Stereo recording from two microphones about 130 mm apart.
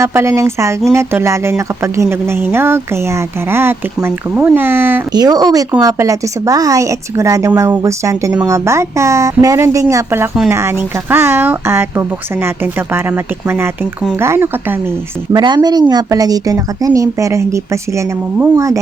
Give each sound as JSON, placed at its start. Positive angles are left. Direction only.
{"t": 0.0, "sound": "a woman's voice", "side_deg": -20}
{"t": 5.1, "sound": "a woman's voice", "side_deg": -30}
{"t": 15.3, "sound": "speech", "side_deg": -35}